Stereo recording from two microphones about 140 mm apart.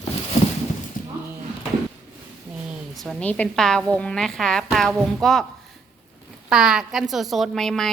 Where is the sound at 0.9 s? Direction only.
75° left (ahead or behind).